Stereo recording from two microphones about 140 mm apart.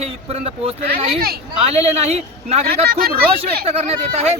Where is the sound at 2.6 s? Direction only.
90° right.